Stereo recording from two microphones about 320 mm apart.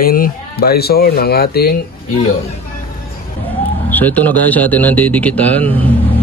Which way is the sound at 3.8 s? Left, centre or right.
Centre.